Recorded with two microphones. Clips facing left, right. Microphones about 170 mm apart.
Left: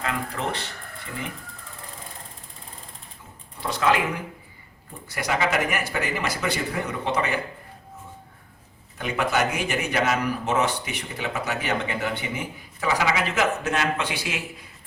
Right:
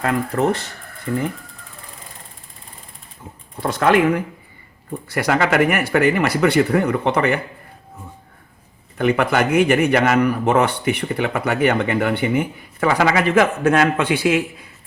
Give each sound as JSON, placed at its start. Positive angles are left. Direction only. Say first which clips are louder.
{"t": 0.0, "sound": "speech", "louder": "right 9 dB", "side_deg": -50}
{"t": 3.6, "sound": "a man's voice", "louder": "right 7 dB", "side_deg": -55}
{"t": 9.0, "sound": "a man's voice", "louder": "right 7 dB", "side_deg": -60}